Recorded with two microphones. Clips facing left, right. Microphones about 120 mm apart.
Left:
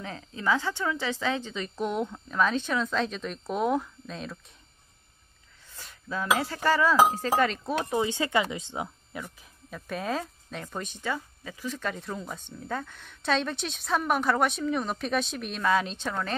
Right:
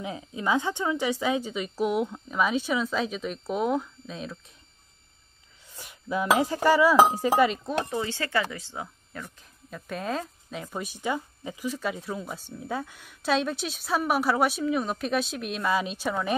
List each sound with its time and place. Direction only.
0.0 s a woman's voice: 15° right (ahead or behind)
5.8 s a woman's voice: 15° right (ahead or behind)
7.8 s speech: 20° left (ahead or behind)
9.1 s speech: 5° left (ahead or behind)